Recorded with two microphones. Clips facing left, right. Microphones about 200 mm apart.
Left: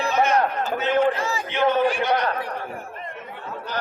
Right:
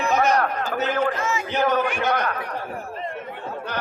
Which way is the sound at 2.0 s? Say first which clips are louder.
Left 1 dB; 45° right (ahead or behind).